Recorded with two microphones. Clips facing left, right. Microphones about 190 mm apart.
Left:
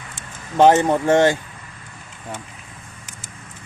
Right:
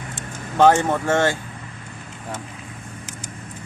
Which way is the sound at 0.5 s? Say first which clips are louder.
Left 2 dB; 15° left (ahead or behind).